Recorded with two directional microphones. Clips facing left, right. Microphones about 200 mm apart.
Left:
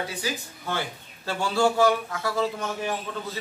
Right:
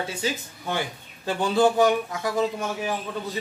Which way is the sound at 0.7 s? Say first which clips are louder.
Right 2 dB; 15° right (ahead or behind).